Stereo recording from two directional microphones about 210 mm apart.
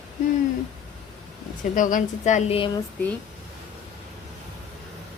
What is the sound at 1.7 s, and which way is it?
Speech, 40° left (ahead or behind).